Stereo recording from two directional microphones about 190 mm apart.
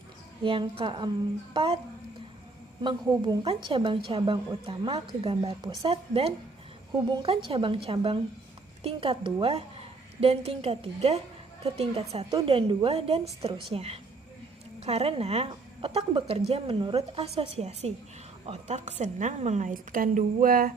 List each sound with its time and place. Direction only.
0.4 s a woman's voice: 25° right (ahead or behind)
2.8 s a woman's voice: 25° right (ahead or behind); by 20.7 s 50° right (ahead or behind)